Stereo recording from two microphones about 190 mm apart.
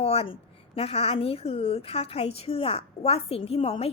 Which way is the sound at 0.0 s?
30° left (ahead or behind).